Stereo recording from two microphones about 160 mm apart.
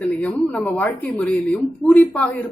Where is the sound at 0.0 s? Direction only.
10° left (ahead or behind).